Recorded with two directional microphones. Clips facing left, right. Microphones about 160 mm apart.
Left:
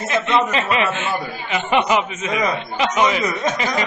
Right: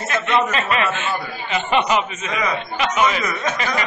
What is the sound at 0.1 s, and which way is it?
A man's voice, 20° left (ahead or behind).